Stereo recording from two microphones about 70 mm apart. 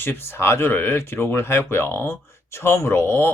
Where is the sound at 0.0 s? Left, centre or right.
Left.